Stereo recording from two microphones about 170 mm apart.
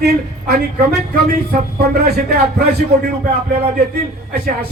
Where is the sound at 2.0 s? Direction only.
65° right (ahead or behind).